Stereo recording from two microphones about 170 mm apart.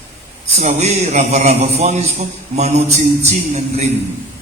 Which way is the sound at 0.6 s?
40° right (ahead or behind).